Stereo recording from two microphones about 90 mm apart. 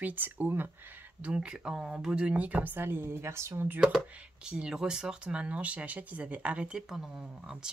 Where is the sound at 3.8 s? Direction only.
5° right (ahead or behind).